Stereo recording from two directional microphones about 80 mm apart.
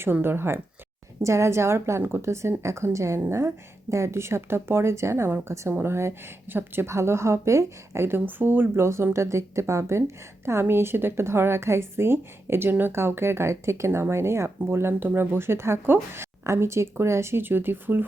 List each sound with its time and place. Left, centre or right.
0.0 s a woman's voice: right